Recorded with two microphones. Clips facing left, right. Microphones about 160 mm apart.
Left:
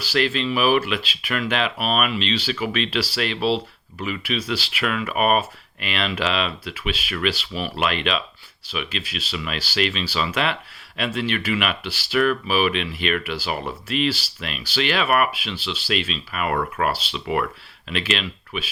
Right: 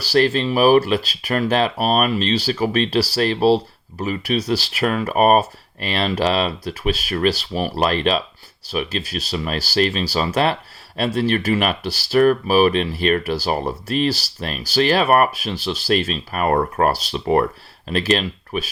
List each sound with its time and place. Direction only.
0.0 s speech: 40° right (ahead or behind)